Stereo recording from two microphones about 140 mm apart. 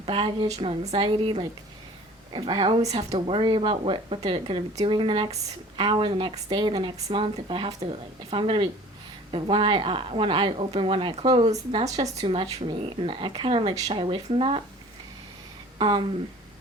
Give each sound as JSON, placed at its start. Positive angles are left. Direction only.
{"t": 0.0, "sound": "a woman's voice", "side_deg": -40}
{"t": 11.9, "sound": "speech", "side_deg": -30}
{"t": 12.3, "sound": "speech", "side_deg": -40}
{"t": 15.8, "sound": "speech", "side_deg": -35}